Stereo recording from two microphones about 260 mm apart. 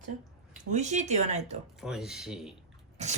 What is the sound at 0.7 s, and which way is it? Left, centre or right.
Speech, right.